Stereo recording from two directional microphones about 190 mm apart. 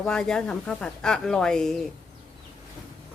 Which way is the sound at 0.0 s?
5° left (ahead or behind).